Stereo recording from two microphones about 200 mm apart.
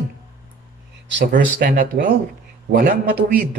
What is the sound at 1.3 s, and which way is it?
Speech, 45° right (ahead or behind).